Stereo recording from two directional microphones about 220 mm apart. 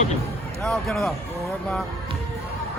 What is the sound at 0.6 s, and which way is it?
Speech, centre (ahead or behind).